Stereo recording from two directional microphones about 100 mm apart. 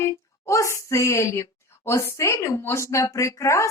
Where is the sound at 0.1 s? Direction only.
30° left (ahead or behind).